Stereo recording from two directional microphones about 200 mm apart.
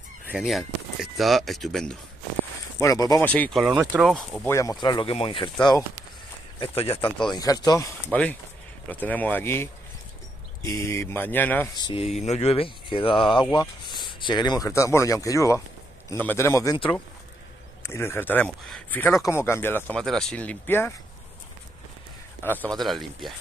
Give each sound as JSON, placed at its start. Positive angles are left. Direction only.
{"t": 0.3, "sound": "speech", "side_deg": 0}
{"t": 2.8, "sound": "speech", "side_deg": 15}
{"t": 4.8, "sound": "speech", "side_deg": 25}
{"t": 11.7, "sound": "speech", "side_deg": 25}
{"t": 22.4, "sound": "speech", "side_deg": 10}